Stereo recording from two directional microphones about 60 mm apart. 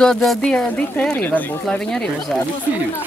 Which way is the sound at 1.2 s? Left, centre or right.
Left.